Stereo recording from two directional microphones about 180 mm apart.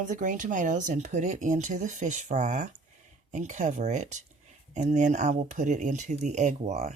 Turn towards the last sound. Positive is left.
turn(degrees=-40)  # may be behind; listen again after turning